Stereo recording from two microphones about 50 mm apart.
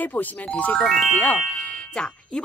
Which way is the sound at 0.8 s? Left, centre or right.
Centre.